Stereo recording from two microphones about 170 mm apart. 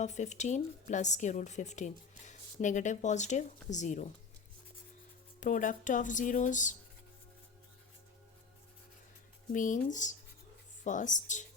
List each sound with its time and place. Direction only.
0.0 s a woman's voice: 45° left (ahead or behind)
5.4 s a woman's voice: 50° left (ahead or behind)
9.5 s a woman's voice: 50° left (ahead or behind)